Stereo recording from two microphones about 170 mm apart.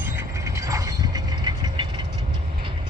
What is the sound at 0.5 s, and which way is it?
Mechanisms, 20° right (ahead or behind).